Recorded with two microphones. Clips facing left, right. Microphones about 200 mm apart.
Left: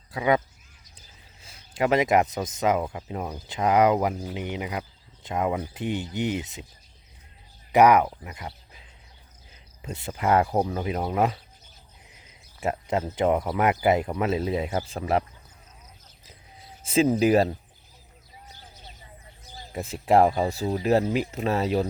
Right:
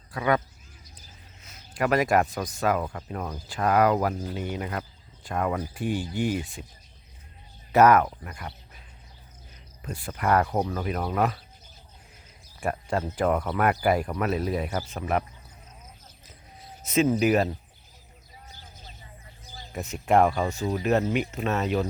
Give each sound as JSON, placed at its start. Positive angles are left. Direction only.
{"t": 0.1, "sound": "speech", "side_deg": 20}
{"t": 4.1, "sound": "speech", "side_deg": 0}
{"t": 4.4, "sound": "speech", "side_deg": 15}
{"t": 7.7, "sound": "speech", "side_deg": 15}
{"t": 9.8, "sound": "speech", "side_deg": 25}
{"t": 12.5, "sound": "a sound", "side_deg": 20}
{"t": 13.1, "sound": "speech", "side_deg": 20}
{"t": 16.8, "sound": "speech", "side_deg": 30}
{"t": 19.7, "sound": "speech", "side_deg": 30}